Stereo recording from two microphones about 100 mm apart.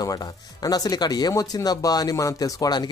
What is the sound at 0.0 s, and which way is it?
Speech, 40° left (ahead or behind).